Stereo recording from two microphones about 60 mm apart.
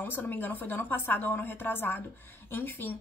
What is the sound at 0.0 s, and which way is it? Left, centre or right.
Speech, left.